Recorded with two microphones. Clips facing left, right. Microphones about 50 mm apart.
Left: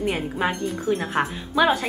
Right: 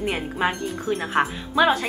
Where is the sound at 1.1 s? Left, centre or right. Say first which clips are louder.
Right 2 dB; centre.